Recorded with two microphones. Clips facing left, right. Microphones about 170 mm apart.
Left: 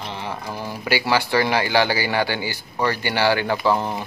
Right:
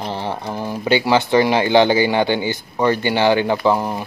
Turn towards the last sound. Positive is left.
turn(degrees=-10)  # may be behind; listen again after turning